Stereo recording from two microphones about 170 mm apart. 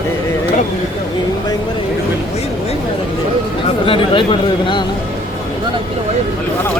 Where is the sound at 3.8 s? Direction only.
30° left (ahead or behind).